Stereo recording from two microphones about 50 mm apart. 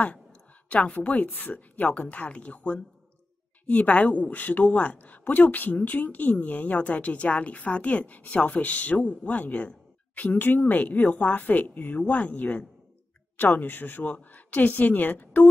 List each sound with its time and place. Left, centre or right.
0.0 s a woman's voice: left
13.4 s a woman's voice: left